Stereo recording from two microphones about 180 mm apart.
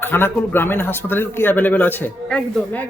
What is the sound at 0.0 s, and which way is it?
Speech, 10° left (ahead or behind).